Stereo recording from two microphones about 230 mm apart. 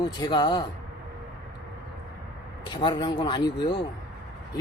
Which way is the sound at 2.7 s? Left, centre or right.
Centre.